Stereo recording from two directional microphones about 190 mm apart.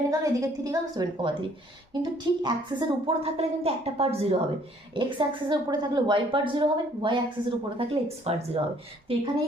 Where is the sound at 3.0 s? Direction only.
30° right (ahead or behind).